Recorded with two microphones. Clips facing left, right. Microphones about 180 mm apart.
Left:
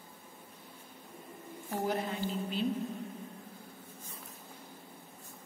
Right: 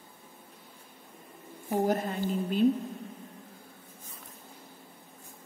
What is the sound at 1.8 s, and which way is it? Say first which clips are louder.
Speech: right 4 dB; 45° right (ahead or behind).